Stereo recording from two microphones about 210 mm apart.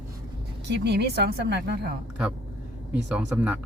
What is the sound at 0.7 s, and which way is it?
A woman's voice, 50° right (ahead or behind).